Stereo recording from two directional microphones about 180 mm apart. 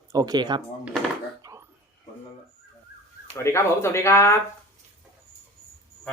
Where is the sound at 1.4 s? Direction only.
20° right (ahead or behind).